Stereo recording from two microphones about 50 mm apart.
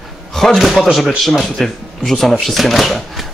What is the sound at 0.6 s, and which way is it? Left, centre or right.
Speech, centre.